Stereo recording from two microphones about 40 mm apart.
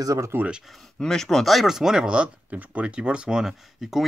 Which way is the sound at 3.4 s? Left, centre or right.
Centre.